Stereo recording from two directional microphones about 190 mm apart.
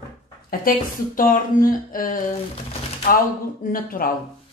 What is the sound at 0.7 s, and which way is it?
Speech, 50° left (ahead or behind).